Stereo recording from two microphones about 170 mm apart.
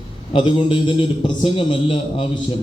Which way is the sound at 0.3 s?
30° left (ahead or behind).